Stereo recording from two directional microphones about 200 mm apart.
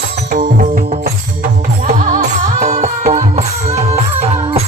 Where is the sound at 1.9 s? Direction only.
40° right (ahead or behind).